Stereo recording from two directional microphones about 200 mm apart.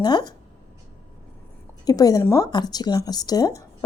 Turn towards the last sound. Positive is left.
turn(degrees=20)  # may be behind; listen again after turning